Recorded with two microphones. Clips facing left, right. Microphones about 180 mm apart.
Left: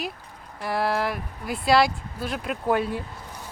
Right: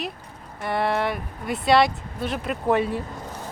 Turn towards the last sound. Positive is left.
turn(degrees=0)  # may be behind; listen again after turning